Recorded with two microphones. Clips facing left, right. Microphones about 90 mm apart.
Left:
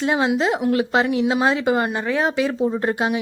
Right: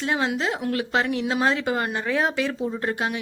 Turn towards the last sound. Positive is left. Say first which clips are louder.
# left 5 dB
turn(degrees=20)  # may be behind; listen again after turning